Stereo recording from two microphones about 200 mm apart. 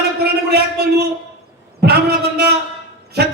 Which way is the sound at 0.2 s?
55° right (ahead or behind).